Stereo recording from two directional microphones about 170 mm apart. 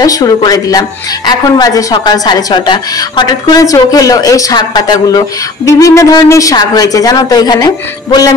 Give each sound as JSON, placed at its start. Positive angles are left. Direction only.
{"t": 0.0, "sound": "a woman's voice", "side_deg": 20}